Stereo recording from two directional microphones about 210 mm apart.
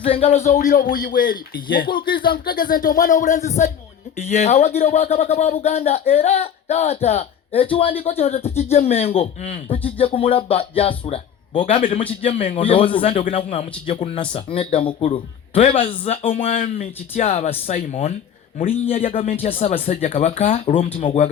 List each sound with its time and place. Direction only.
0.0 s a man's voice: 25° left (ahead or behind)
11.6 s a man's voice: 35° left (ahead or behind)